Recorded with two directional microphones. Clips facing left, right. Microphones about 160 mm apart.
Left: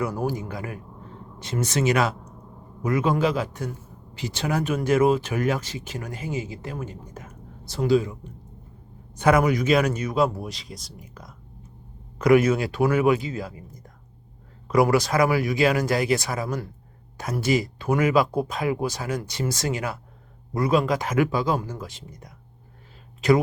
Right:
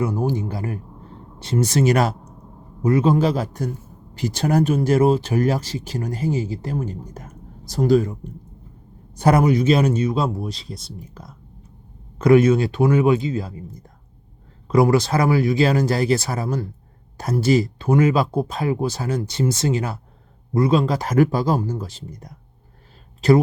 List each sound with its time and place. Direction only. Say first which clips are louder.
0.0 s speech: right 4 dB; 25° right (ahead or behind); by 8.3 s 45° right (ahead or behind)
9.1 s speech: right 3 dB; 35° right (ahead or behind)